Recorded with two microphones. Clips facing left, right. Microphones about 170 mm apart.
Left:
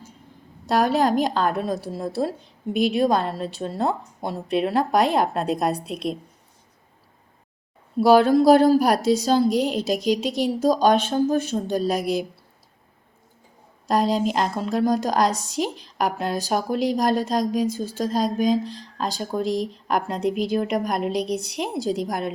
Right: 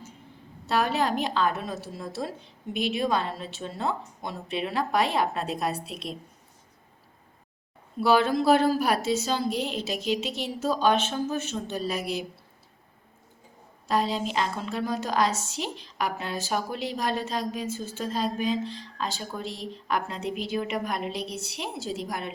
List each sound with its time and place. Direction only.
0.7 s a woman's voice: 40° left (ahead or behind)
5.7 s a woman's voice: centre (ahead or behind)
7.9 s a woman's voice: 40° left (ahead or behind)
13.8 s a woman's voice: 40° left (ahead or behind)